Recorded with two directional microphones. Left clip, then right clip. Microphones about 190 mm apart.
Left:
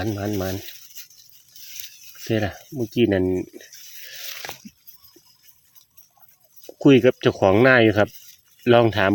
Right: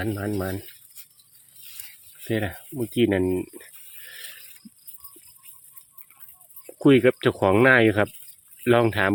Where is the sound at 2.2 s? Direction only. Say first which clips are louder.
Left 3 dB; 20° left (ahead or behind).